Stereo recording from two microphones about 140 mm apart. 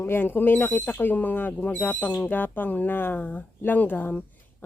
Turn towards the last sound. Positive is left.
turn(degrees=15)  # may be behind; listen again after turning